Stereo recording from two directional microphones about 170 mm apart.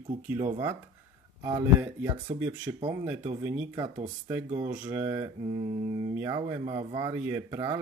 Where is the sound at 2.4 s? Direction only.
10° right (ahead or behind).